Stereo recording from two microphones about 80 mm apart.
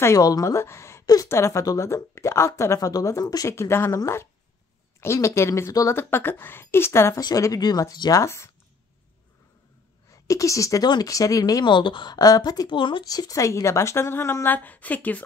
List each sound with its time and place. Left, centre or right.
0.2 s a woman's voice: left
1.0 s a sound: left
1.3 s a woman's voice: left
3.5 s a woman's voice: left
5.9 s a woman's voice: left
7.2 s speech: left
8.2 s a woman's voice: left
10.2 s speech: left
11.6 s a woman's voice: left
12.2 s speech: left
12.6 s speech: left
13.0 s a woman's voice: left